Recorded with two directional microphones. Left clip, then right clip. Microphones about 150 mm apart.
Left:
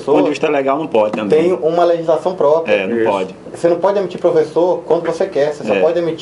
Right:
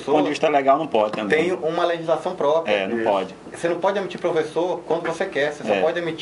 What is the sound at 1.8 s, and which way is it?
Speech, 20° right (ahead or behind).